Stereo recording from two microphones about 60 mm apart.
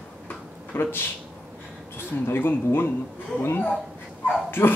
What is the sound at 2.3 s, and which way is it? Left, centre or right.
Speech, left.